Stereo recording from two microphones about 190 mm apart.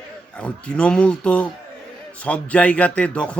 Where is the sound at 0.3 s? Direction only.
5° left (ahead or behind).